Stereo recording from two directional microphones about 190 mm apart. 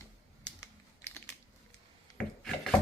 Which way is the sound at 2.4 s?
Centre (ahead or behind).